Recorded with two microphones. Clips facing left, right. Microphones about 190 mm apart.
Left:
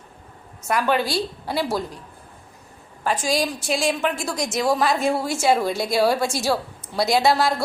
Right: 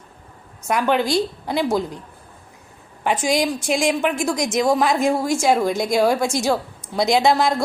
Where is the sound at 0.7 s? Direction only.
15° right (ahead or behind).